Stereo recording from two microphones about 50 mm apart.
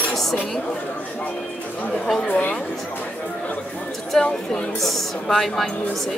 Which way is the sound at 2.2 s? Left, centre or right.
Left.